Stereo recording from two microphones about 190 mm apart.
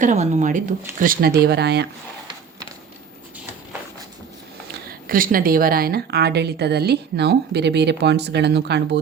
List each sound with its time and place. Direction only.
0.0 s speech: 40° right (ahead or behind)
1.4 s a woman's voice: 60° right (ahead or behind)
4.9 s a woman's voice: 50° right (ahead or behind)